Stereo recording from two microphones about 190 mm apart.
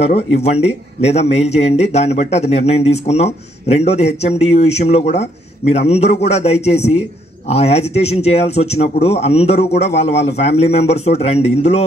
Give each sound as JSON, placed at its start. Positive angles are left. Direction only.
{"t": 0.0, "sound": "speech", "side_deg": 35}